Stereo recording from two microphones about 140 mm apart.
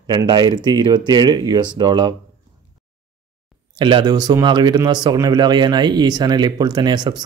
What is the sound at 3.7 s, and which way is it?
Speech, 35° right (ahead or behind).